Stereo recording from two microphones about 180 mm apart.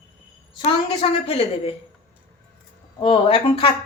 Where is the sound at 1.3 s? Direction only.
35° left (ahead or behind).